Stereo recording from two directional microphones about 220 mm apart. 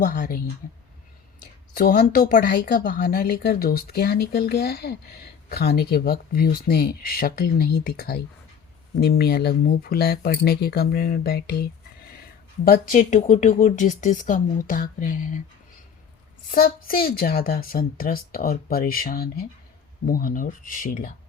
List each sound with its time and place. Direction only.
0.0 s speech: 40° left (ahead or behind)
1.7 s speech: 40° left (ahead or behind)
12.6 s speech: 35° left (ahead or behind)
16.5 s speech: 40° left (ahead or behind)